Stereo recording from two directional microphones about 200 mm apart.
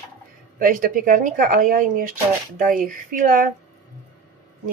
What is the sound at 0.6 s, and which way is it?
Speech, 40° right (ahead or behind).